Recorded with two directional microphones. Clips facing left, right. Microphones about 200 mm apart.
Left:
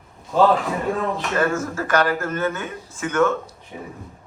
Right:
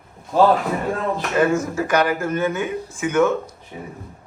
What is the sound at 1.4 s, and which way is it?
Speech, 15° right (ahead or behind).